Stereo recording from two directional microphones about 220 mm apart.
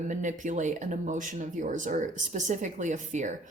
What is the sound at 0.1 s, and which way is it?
Speech, 35° right (ahead or behind).